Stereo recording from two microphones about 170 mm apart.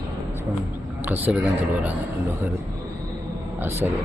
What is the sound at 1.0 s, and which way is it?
Speech, 10° right (ahead or behind).